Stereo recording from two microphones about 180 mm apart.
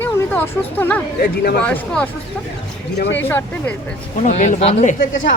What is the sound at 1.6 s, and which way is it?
Speech, 5° left (ahead or behind).